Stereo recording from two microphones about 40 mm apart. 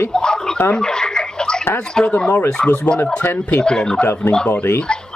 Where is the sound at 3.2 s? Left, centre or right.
Left.